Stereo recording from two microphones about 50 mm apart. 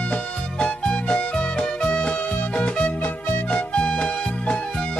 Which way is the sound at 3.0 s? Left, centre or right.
Left.